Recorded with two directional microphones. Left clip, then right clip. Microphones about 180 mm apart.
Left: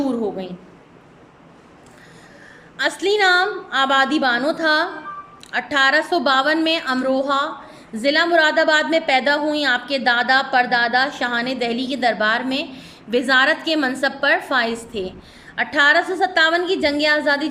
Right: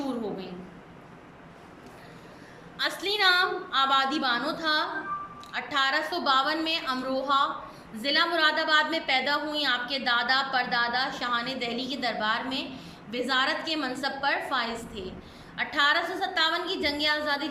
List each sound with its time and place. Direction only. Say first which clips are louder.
2.7 s a woman's voice: left 9 dB; 40° left (ahead or behind)